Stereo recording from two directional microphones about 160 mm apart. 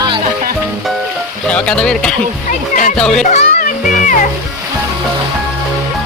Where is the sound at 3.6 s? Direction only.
55° left (ahead or behind).